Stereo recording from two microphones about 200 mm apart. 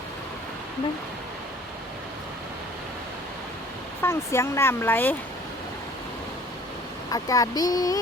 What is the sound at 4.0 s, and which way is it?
Speech, 15° left (ahead or behind).